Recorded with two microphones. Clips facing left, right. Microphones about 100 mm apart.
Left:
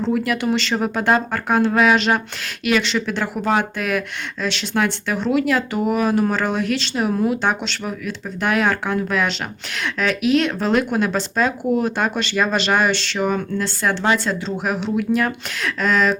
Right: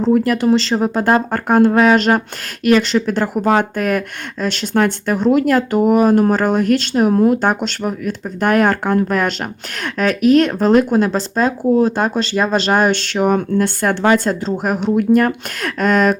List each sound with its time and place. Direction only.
0.0 s speech: 40° right (ahead or behind)